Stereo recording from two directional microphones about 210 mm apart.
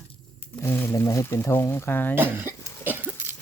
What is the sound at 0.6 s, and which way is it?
Speech, 10° left (ahead or behind).